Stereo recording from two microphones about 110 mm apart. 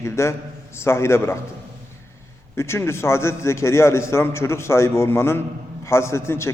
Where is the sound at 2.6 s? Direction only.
25° left (ahead or behind).